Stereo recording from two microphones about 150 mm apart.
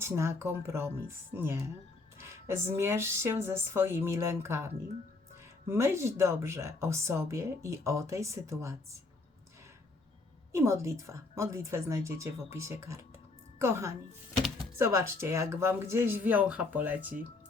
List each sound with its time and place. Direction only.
0.0 s speech: 20° right (ahead or behind)
10.5 s speech: 20° right (ahead or behind)